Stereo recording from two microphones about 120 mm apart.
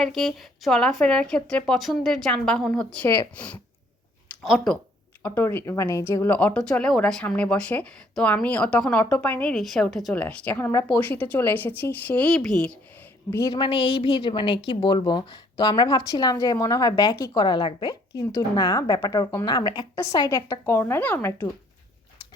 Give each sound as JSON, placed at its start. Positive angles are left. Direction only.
{"t": 0.0, "sound": "speech", "side_deg": 5}
{"t": 4.4, "sound": "speech", "side_deg": -5}
{"t": 5.2, "sound": "speech", "side_deg": 15}
{"t": 10.2, "sound": "speech", "side_deg": 15}
{"t": 13.5, "sound": "a woman's voice", "side_deg": 45}
{"t": 18.1, "sound": "a woman's voice", "side_deg": 30}